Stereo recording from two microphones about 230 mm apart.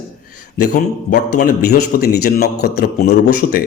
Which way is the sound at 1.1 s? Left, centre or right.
Left.